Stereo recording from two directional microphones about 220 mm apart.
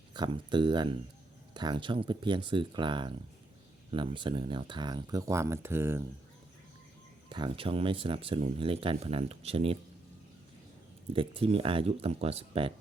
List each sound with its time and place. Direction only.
0.1 s speech: 20° right (ahead or behind)
7.3 s speech: 20° right (ahead or behind)
11.1 s speech: 25° right (ahead or behind)